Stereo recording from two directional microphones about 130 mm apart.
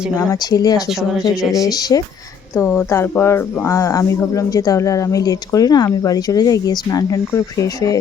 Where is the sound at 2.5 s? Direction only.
20° left (ahead or behind).